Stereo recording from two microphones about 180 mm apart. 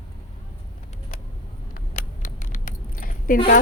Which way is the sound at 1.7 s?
50° left (ahead or behind).